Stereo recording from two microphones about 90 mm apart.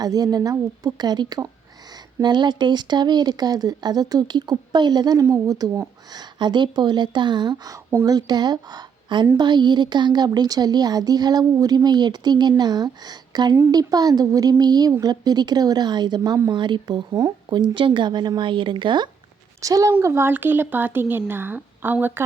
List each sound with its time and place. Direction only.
0.0 s speech: 45° right (ahead or behind)
5.2 s speech: 40° right (ahead or behind)
6.1 s a woman's voice: 55° right (ahead or behind)
19.6 s speech: 40° right (ahead or behind); by 22.2 s 20° right (ahead or behind)